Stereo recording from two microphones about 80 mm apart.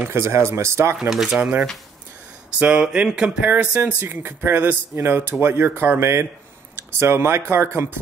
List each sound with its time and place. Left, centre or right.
0.1 s speech: right
1.1 s speech: centre
1.4 s speech: centre
3.7 s speech: right